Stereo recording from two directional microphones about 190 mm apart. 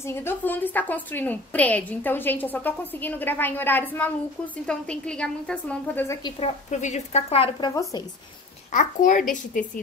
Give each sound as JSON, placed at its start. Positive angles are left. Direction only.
{"t": 0.0, "sound": "a woman's voice", "side_deg": 10}
{"t": 6.4, "sound": "a woman's voice", "side_deg": 30}
{"t": 8.7, "sound": "speech", "side_deg": 40}